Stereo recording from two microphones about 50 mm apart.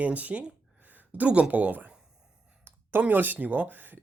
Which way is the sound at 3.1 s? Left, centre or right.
Right.